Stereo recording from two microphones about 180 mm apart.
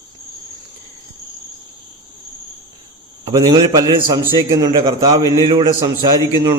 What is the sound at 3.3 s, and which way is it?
A man's voice, 25° right (ahead or behind).